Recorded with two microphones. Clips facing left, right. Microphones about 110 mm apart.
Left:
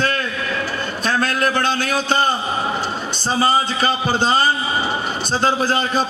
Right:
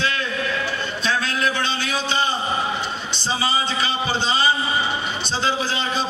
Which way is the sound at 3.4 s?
45° left (ahead or behind).